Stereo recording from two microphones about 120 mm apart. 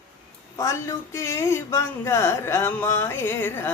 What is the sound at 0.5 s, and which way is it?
Speech, 25° left (ahead or behind).